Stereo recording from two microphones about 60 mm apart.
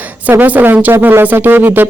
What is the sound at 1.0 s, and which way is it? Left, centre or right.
Speech, right.